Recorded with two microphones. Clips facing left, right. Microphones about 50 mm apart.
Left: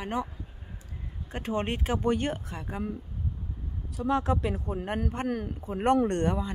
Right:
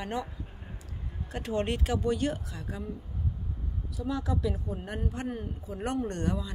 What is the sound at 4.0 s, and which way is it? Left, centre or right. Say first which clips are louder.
Speech: left 5 dB; left.